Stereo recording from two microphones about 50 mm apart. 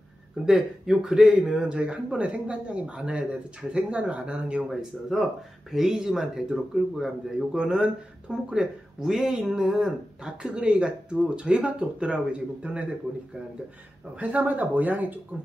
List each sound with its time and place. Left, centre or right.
0.5 s speech: centre
4.6 s speech: centre
7.5 s speech: centre
14.2 s speech: right